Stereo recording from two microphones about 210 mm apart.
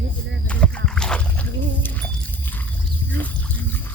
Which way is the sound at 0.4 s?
5° left (ahead or behind).